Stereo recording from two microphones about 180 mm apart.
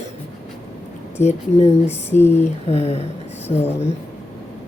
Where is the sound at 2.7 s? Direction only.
35° left (ahead or behind).